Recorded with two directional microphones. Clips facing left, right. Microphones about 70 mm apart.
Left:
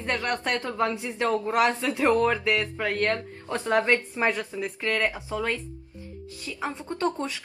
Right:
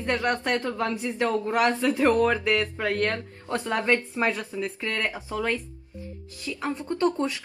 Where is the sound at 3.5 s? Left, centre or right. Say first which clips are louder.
Left 1 dB; left.